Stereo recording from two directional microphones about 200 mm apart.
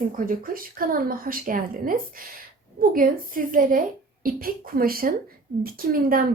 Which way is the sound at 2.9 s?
45° right (ahead or behind).